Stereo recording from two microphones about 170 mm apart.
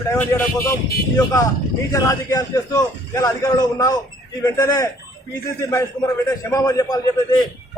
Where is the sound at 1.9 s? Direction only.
20° left (ahead or behind).